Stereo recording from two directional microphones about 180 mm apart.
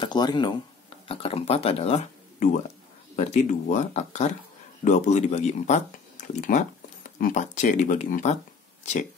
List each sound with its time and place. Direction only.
0.0 s speech: 25° left (ahead or behind); by 8.4 s 45° left (ahead or behind)